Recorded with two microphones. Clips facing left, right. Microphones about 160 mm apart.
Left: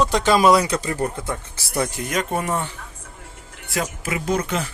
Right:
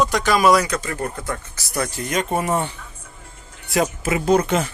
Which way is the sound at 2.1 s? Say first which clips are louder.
Right 2 dB; centre (ahead or behind).